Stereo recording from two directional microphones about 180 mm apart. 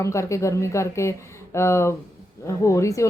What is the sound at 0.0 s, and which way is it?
Speech, 15° left (ahead or behind).